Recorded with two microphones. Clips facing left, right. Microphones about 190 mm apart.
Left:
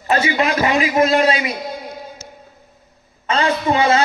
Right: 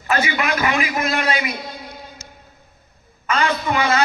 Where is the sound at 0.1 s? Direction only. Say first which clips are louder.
Left 3 dB; 30° left (ahead or behind).